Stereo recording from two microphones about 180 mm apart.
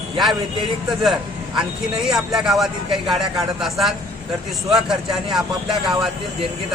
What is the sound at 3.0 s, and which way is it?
Speech, 25° right (ahead or behind).